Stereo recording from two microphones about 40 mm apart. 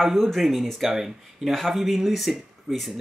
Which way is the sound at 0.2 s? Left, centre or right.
Centre.